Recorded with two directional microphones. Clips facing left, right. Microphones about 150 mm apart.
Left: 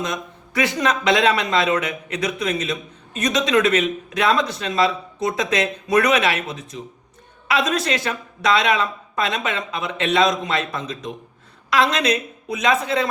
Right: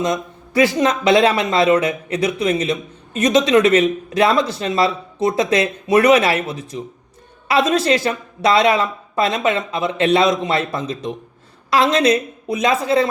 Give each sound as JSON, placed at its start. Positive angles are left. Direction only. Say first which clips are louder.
{"t": 0.0, "sound": "speech", "louder": "right 6 dB", "side_deg": -30}